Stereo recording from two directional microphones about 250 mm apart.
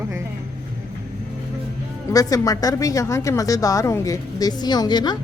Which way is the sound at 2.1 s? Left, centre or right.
Centre.